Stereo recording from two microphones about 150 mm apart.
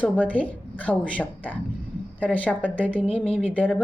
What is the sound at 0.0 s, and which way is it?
A woman's voice, 10° left (ahead or behind).